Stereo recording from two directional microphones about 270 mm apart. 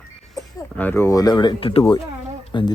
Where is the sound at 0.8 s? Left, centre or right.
Centre.